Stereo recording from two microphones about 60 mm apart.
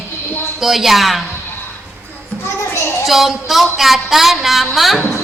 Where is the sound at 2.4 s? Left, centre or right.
Left.